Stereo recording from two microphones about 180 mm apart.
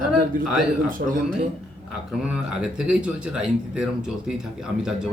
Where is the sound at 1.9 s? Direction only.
5° right (ahead or behind).